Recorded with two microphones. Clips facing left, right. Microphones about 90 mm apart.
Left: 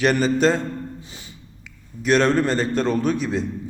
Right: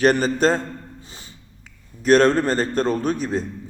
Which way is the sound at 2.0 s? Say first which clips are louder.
Right 2 dB; 40° right (ahead or behind).